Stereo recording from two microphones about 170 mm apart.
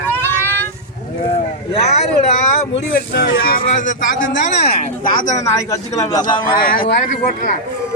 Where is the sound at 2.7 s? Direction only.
70° left (ahead or behind).